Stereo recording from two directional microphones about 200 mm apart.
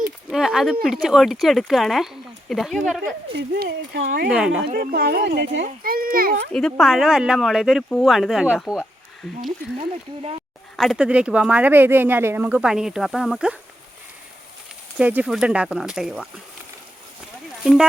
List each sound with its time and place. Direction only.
0.3 s speech: centre (ahead or behind)
3.3 s speech: 55° right (ahead or behind)
4.0 s speech: 45° right (ahead or behind)
4.3 s speech: 5° right (ahead or behind)
4.6 s speech: 45° right (ahead or behind)
5.6 s speech: 45° right (ahead or behind)
6.5 s speech: centre (ahead or behind)
10.8 s speech: centre (ahead or behind)
14.9 s speech: 5° right (ahead or behind)
17.6 s speech: centre (ahead or behind)